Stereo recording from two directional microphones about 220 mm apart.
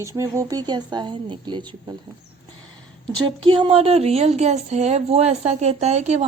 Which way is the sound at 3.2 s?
20° right (ahead or behind).